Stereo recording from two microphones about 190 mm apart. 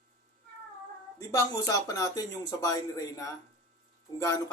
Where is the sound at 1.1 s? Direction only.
20° left (ahead or behind).